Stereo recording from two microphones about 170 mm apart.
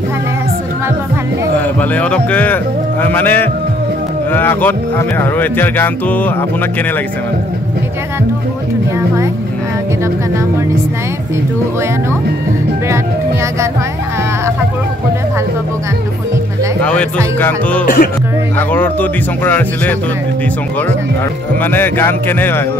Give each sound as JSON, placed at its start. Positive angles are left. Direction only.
{"t": 1.6, "sound": "speech", "side_deg": 10}
{"t": 16.8, "sound": "speech", "side_deg": 5}
{"t": 17.8, "sound": "speech", "side_deg": 60}
{"t": 18.6, "sound": "speech", "side_deg": 10}
{"t": 21.6, "sound": "speech", "side_deg": 10}